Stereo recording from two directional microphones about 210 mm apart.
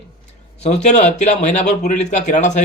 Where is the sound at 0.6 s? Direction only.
30° left (ahead or behind).